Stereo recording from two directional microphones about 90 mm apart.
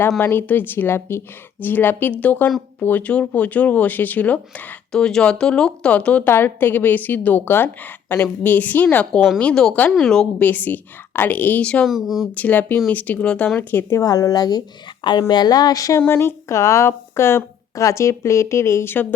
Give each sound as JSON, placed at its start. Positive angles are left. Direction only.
{"t": 0.2, "sound": "a woman's voice", "side_deg": 25}
{"t": 6.2, "sound": "a woman's voice", "side_deg": 25}
{"t": 10.4, "sound": "a woman's voice", "side_deg": 20}
{"t": 11.9, "sound": "speech", "side_deg": -5}
{"t": 12.4, "sound": "a woman's voice", "side_deg": 20}
{"t": 13.9, "sound": "a woman's voice", "side_deg": 40}
{"t": 16.0, "sound": "speech", "side_deg": 25}